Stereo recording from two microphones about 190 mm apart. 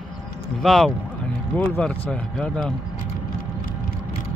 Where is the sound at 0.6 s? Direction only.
Centre (ahead or behind).